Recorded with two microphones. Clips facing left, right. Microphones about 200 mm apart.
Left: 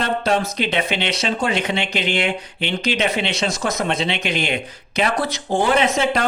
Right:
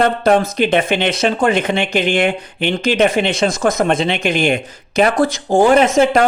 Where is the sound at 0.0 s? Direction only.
50° right (ahead or behind).